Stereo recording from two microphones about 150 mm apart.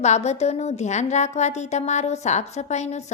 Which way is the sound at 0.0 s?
50° left (ahead or behind).